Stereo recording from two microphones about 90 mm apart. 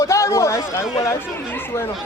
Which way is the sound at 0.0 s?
35° left (ahead or behind).